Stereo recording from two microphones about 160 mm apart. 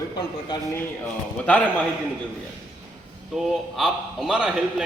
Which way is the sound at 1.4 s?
10° left (ahead or behind).